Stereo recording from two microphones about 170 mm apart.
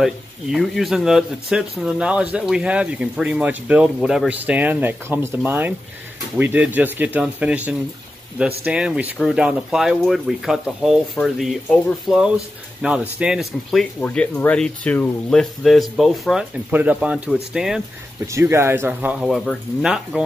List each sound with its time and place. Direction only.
0.0 s speech: centre (ahead or behind)
18.2 s speech: 15° right (ahead or behind)